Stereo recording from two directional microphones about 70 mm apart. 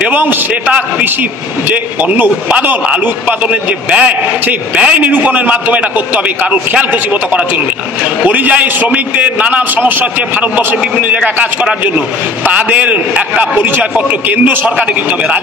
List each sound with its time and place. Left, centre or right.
0.0 s a man's voice: right